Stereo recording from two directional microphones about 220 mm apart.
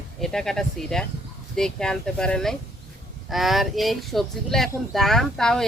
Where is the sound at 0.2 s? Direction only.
Centre (ahead or behind).